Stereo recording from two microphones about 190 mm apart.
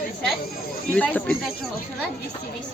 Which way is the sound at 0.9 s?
5° left (ahead or behind).